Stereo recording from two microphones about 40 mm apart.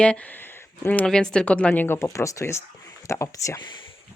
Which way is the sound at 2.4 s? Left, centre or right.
Left.